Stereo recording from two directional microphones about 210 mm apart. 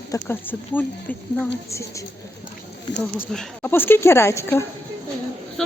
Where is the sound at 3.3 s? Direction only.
5° left (ahead or behind).